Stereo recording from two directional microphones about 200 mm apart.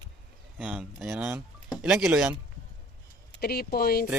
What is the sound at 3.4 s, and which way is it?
Speech, 50° left (ahead or behind).